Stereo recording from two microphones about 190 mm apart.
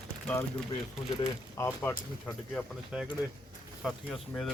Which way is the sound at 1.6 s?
15° left (ahead or behind).